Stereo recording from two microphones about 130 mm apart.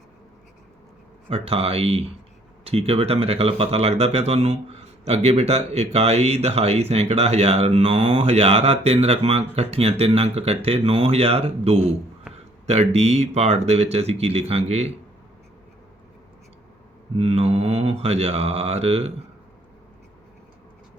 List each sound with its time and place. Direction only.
1.3 s speech: 50° right (ahead or behind)
17.2 s speech: 50° right (ahead or behind)